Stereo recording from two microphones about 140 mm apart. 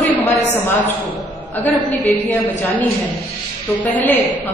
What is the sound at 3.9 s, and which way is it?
Speech, 10° left (ahead or behind).